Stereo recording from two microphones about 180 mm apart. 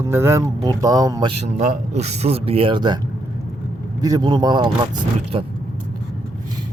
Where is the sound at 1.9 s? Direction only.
35° right (ahead or behind).